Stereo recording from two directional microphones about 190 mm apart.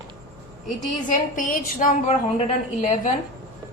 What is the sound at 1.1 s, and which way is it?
A woman's voice, 45° left (ahead or behind).